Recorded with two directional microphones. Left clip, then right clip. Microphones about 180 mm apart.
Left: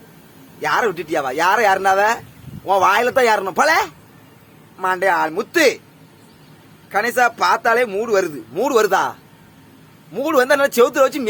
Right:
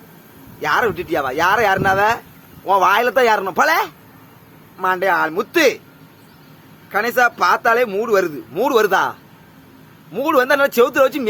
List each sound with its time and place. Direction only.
0.6 s a man's voice: centre (ahead or behind)
6.9 s a man's voice: centre (ahead or behind)